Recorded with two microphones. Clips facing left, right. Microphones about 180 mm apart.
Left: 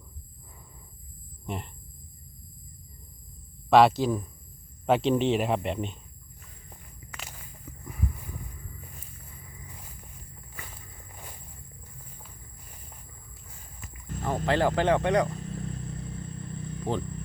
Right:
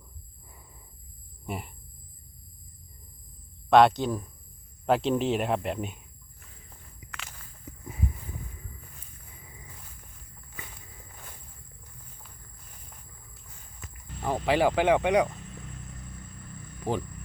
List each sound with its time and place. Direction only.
1.5 s speech: 5° right (ahead or behind)
3.7 s speech: centre (ahead or behind)
7.1 s walk: 10° left (ahead or behind)
7.6 s a sound: 25° right (ahead or behind)
12.2 s a sound: 5° left (ahead or behind)
14.2 s speech: 15° right (ahead or behind)
15.4 s vehicle: 35° left (ahead or behind)